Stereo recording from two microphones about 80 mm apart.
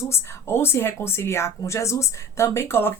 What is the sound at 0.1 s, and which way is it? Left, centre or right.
Speech, left.